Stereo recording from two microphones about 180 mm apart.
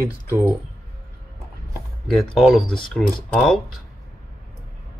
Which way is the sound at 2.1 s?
Centre (ahead or behind).